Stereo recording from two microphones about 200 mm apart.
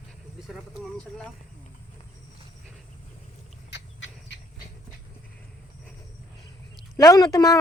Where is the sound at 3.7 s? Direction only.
60° left (ahead or behind).